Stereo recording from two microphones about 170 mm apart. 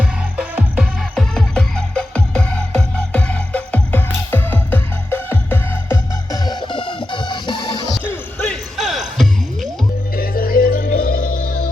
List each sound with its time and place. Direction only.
0.0 s music: 5° right (ahead or behind)
1.1 s music: 5° left (ahead or behind); by 7.9 s 25° left (ahead or behind)
8.0 s music: 10° left (ahead or behind)
10.2 s music: 60° left (ahead or behind)